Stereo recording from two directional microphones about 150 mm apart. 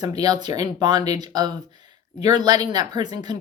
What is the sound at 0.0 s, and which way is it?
Speech, 25° right (ahead or behind).